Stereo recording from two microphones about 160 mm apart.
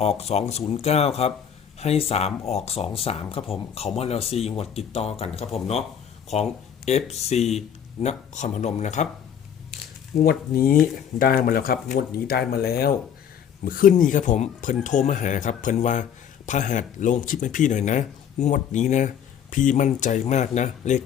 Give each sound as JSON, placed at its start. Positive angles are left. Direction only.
{"t": 0.0, "sound": "speech", "side_deg": 40}
{"t": 10.2, "sound": "speech", "side_deg": 65}
{"t": 13.7, "sound": "speech", "side_deg": 60}